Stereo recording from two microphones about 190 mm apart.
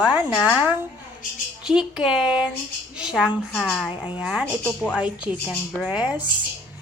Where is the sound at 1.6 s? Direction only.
5° right (ahead or behind).